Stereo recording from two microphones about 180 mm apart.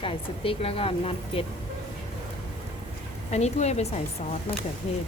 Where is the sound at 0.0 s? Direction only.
30° left (ahead or behind).